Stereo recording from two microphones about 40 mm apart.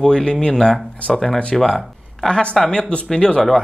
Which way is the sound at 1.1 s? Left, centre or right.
Centre.